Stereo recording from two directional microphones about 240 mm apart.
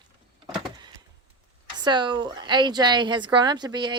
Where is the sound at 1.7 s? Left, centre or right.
Centre.